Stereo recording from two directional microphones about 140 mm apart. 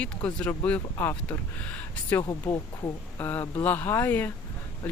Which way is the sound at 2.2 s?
25° left (ahead or behind).